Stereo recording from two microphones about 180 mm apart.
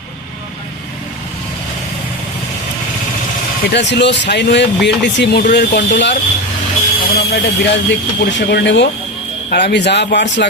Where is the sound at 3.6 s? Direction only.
75° left (ahead or behind).